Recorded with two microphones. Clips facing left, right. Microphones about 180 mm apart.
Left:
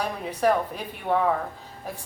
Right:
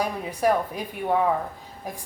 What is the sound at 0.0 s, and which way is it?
A woman's voice, 10° right (ahead or behind).